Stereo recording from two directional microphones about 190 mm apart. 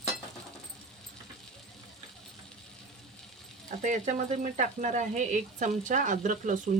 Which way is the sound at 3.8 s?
40° right (ahead or behind).